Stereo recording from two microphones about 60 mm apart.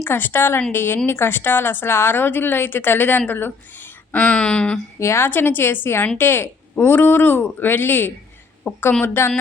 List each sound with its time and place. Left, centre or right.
0.0 s speech: left; by 4.8 s centre
4.9 s speech: left